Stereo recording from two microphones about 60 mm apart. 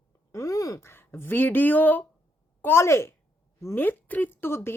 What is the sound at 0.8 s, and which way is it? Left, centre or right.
Speech, left.